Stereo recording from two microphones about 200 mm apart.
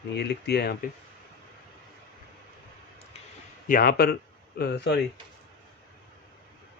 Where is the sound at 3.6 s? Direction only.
45° left (ahead or behind).